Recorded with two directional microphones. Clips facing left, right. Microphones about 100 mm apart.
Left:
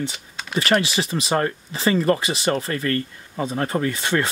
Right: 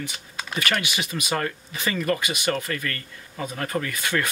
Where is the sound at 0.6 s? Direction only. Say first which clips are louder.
Left 7 dB; 30° left (ahead or behind).